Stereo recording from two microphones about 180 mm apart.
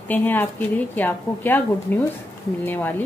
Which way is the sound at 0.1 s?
10° left (ahead or behind).